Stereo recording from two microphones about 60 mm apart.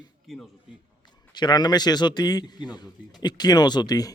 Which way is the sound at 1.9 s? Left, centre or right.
Left.